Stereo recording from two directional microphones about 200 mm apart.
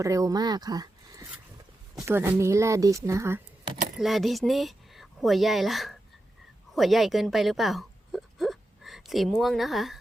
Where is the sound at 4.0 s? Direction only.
Centre (ahead or behind).